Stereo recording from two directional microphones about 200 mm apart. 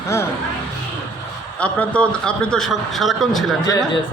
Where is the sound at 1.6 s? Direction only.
5° left (ahead or behind).